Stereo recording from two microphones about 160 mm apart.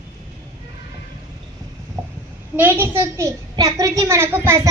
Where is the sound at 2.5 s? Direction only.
15° right (ahead or behind).